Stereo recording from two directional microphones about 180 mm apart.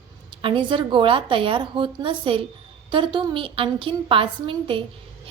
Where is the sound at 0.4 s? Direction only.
30° right (ahead or behind).